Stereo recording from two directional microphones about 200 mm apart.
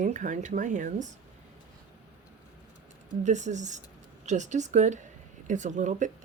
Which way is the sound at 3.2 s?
35° right (ahead or behind).